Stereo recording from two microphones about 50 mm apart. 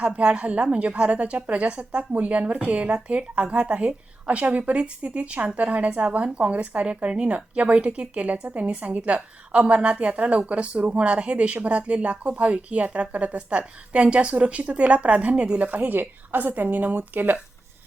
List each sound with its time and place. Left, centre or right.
0.0 s a woman's voice: right